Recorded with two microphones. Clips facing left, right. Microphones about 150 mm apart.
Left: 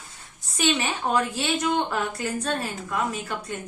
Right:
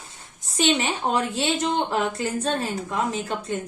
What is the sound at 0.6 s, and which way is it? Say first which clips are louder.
A woman's voice: right 2 dB; 25° right (ahead or behind).